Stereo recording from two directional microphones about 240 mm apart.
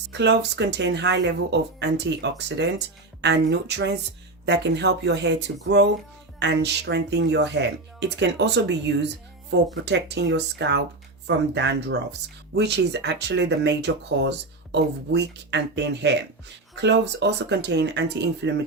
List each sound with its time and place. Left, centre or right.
0.2 s speech: right